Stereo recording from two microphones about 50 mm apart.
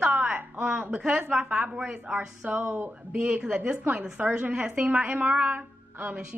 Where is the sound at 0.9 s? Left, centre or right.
Centre.